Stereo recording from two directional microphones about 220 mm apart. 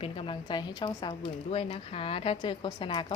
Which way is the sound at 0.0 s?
25° left (ahead or behind).